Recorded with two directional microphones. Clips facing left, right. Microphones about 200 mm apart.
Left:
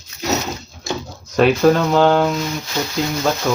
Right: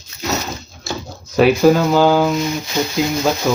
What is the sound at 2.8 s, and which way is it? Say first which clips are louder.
Speech: right 3 dB; 20° right (ahead or behind).